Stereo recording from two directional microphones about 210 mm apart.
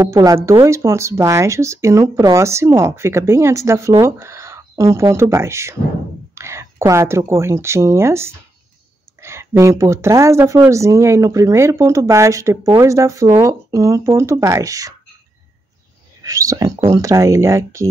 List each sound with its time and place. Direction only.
0.0 s speech: 15° right (ahead or behind)
16.3 s speech: 15° right (ahead or behind)